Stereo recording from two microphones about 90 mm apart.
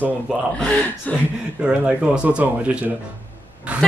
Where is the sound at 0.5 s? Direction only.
15° left (ahead or behind).